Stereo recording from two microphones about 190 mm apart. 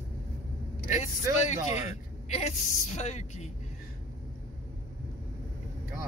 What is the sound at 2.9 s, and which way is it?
Speech, 35° left (ahead or behind).